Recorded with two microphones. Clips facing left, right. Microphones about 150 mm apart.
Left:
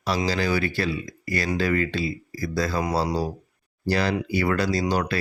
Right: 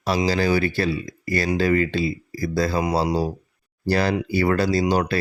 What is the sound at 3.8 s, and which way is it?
Speech, 40° right (ahead or behind).